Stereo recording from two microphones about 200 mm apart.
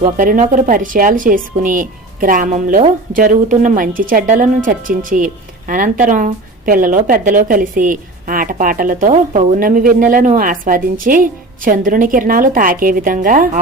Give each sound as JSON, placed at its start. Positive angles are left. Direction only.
{"t": 0.0, "sound": "speech", "side_deg": -40}